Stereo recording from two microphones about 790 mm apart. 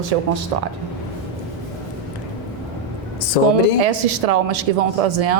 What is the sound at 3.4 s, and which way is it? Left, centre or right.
Speech, left.